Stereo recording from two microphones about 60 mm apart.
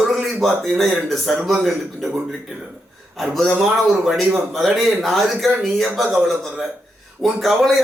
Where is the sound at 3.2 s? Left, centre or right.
Centre.